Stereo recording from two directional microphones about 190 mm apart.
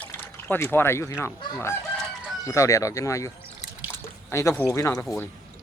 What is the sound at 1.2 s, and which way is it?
Speech, 15° left (ahead or behind).